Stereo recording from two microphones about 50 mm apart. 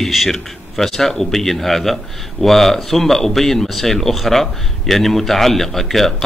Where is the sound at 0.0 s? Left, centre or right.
Centre.